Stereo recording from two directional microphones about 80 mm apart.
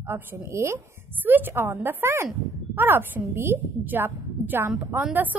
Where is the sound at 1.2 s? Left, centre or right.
Right.